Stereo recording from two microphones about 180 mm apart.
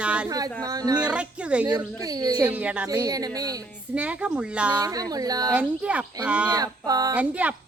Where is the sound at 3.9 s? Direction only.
5° right (ahead or behind).